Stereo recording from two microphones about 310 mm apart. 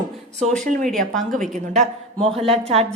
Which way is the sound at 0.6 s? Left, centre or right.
Right.